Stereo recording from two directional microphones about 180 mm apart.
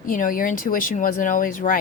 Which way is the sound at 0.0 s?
50° left (ahead or behind).